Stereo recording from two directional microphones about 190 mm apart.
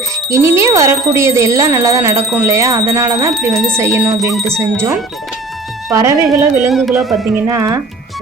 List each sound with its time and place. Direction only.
0.3 s speech: 15° right (ahead or behind)
4.3 s carnatic music: centre (ahead or behind)
5.9 s speech: 15° right (ahead or behind)
6.2 s carnatic music: centre (ahead or behind)
7.4 s speech: 15° right (ahead or behind)